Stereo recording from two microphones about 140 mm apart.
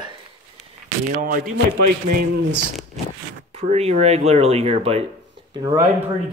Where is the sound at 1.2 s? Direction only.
75° right (ahead or behind).